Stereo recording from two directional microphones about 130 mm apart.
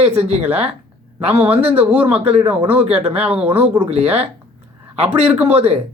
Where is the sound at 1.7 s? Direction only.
15° right (ahead or behind).